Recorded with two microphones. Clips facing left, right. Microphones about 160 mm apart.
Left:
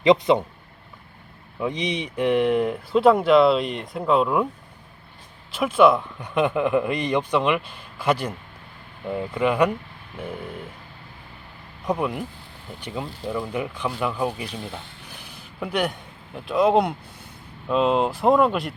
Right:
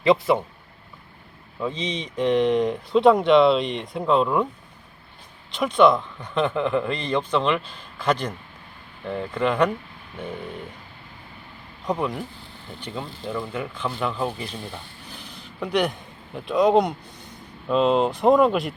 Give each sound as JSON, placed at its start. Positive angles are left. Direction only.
{"t": 0.0, "sound": "speech", "side_deg": 20}
{"t": 1.5, "sound": "speech", "side_deg": 15}
{"t": 5.5, "sound": "a man's voice", "side_deg": 5}
{"t": 11.9, "sound": "a man's voice", "side_deg": 10}
{"t": 15.0, "sound": "a sound", "side_deg": 10}
{"t": 17.7, "sound": "speech", "side_deg": 5}